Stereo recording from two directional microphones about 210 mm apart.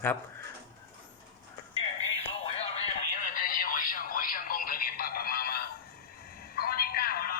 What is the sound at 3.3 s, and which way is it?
Telephone, 40° left (ahead or behind).